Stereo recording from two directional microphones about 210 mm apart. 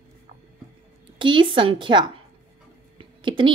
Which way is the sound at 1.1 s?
25° right (ahead or behind).